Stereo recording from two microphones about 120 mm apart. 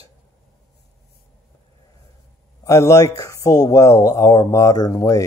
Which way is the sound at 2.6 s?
25° left (ahead or behind).